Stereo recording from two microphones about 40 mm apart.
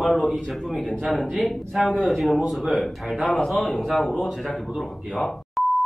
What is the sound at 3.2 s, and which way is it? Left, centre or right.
Speech, centre.